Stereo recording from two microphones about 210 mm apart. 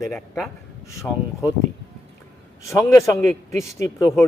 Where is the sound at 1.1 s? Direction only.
5° left (ahead or behind).